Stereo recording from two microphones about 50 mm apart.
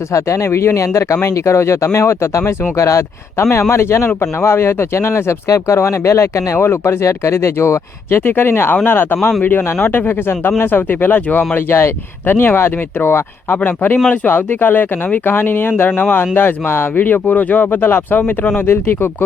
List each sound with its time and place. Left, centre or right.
0.1 s speech: left
3.5 s speech: left
6.7 s speech: left
8.2 s speech: left
8.7 s speech: left